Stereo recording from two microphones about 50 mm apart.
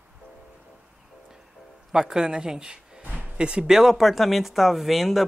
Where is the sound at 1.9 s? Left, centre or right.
Centre.